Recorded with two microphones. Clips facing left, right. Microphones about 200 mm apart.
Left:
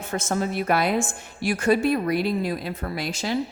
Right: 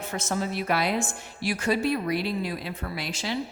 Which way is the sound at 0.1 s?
50° left (ahead or behind).